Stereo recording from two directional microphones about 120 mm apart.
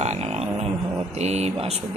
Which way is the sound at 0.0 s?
65° right (ahead or behind).